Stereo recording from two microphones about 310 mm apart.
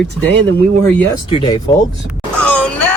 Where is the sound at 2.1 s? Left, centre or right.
Centre.